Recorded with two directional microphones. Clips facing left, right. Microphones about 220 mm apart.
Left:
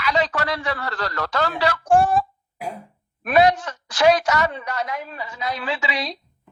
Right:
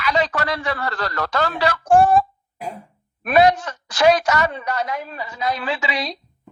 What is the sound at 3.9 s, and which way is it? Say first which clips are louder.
A woman's voice: right 1 dB; 45° right (ahead or behind).